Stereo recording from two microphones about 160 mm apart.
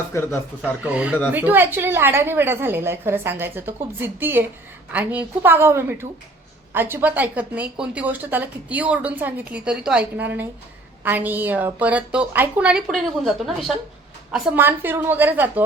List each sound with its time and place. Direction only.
0.1 s speech: 15° left (ahead or behind)
0.8 s speech: 5° right (ahead or behind)